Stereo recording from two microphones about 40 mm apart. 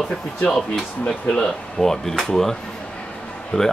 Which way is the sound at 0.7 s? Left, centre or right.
Centre.